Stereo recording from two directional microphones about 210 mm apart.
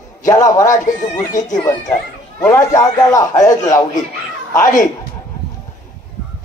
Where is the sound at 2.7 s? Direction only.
15° left (ahead or behind).